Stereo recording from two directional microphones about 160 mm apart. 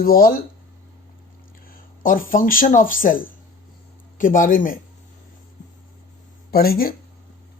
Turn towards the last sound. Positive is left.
turn(degrees=70)  # may be behind; listen again after turning